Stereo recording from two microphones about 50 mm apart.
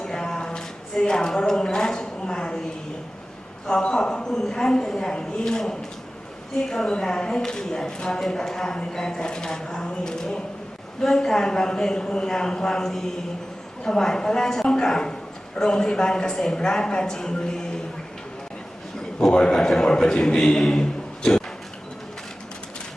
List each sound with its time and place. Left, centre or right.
0.0 s a sound: centre
3.7 s speech: centre
19.3 s speech: centre